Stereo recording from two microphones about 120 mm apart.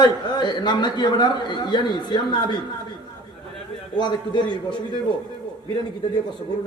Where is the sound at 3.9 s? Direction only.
40° left (ahead or behind).